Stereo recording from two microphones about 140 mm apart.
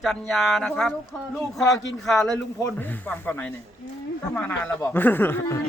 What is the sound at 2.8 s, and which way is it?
Speech, 15° left (ahead or behind).